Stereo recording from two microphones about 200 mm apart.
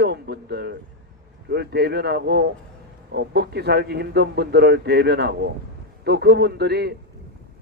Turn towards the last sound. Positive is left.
turn(degrees=-55)  # may be behind; listen again after turning